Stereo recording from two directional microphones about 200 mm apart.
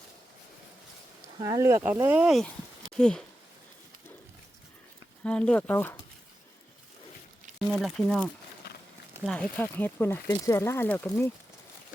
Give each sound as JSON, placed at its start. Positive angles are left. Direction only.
{"t": 1.4, "sound": "speech", "side_deg": -15}
{"t": 5.2, "sound": "speech", "side_deg": 5}
{"t": 7.7, "sound": "speech", "side_deg": 0}
{"t": 8.7, "sound": "walk", "side_deg": 55}
{"t": 9.2, "sound": "speech", "side_deg": 5}